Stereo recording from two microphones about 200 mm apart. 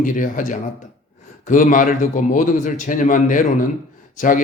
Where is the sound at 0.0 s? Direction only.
40° left (ahead or behind).